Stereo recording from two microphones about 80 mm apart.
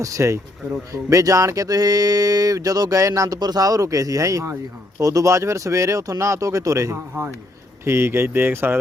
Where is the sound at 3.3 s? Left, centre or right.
Right.